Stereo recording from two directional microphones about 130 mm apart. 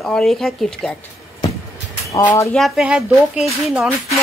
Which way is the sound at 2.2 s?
20° left (ahead or behind).